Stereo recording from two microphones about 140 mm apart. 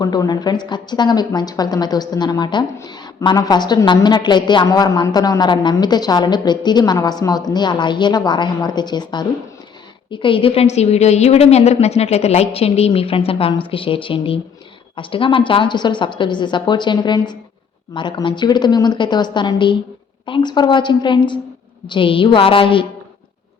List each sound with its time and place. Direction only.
0.0 s a woman's voice: 30° left (ahead or behind)